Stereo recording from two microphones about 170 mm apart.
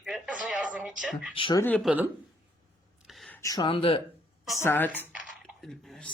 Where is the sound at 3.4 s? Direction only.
20° left (ahead or behind).